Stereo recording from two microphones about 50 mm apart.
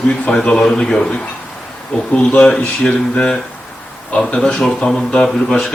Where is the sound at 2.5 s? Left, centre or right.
Centre.